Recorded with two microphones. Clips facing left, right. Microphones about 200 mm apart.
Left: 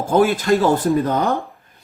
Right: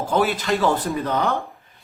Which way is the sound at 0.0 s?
50° left (ahead or behind).